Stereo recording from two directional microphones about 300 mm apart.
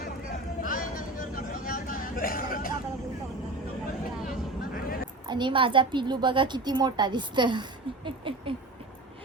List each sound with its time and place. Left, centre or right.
0.6 s a sound: left
4.3 s vehicle: left
5.2 s a woman's voice: centre